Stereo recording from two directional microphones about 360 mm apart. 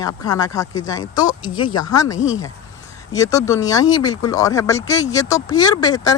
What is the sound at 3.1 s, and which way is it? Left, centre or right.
Speech, centre.